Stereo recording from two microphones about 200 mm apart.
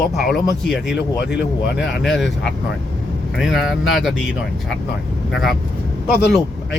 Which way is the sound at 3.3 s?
Centre (ahead or behind).